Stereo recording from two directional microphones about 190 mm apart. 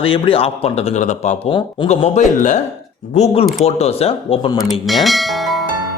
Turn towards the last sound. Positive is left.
turn(degrees=0)  # may be behind; listen again after turning